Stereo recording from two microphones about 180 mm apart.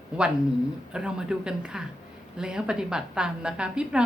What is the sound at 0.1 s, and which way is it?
A woman's voice, 5° right (ahead or behind).